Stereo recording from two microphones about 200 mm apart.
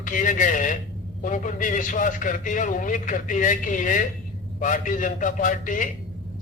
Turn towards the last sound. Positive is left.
turn(degrees=40)  # may be behind; listen again after turning